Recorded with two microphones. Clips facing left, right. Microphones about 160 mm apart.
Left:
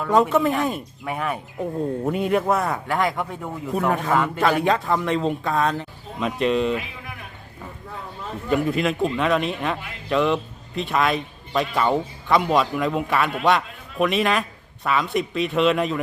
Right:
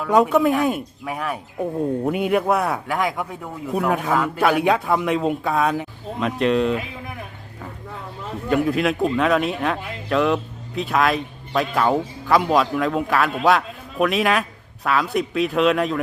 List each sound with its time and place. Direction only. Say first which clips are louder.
0.0 s a man's voice: right 2 dB; 5° right (ahead or behind)
8.4 s a man's voice: right 2 dB; centre (ahead or behind)